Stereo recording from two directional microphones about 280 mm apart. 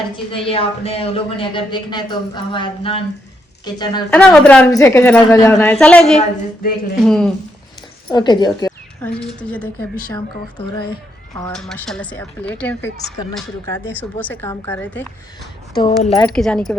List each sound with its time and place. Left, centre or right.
0.3 s speech: centre
4.2 s speech: centre
6.1 s speech: left
7.0 s speech: centre
8.1 s speech: centre
11.3 s speech: centre
16.0 s speech: centre
16.3 s speech: centre